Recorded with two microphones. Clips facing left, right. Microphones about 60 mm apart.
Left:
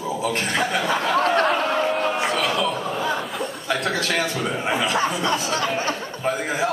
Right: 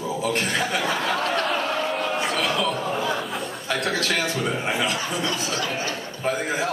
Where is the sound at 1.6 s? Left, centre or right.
Left.